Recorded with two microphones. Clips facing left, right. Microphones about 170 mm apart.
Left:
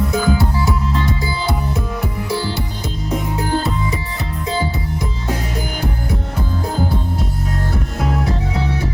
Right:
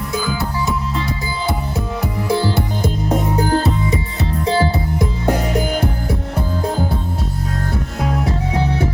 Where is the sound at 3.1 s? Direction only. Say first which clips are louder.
Right 2 dB; 40° right (ahead or behind).